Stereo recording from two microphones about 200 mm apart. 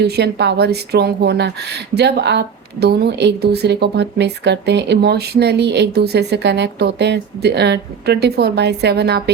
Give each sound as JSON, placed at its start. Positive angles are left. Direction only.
{"t": 0.0, "sound": "speech", "side_deg": -55}